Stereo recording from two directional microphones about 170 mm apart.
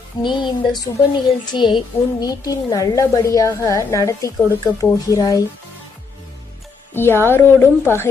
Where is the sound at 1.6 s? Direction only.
30° left (ahead or behind).